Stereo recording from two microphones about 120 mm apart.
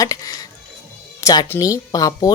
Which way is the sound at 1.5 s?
30° left (ahead or behind).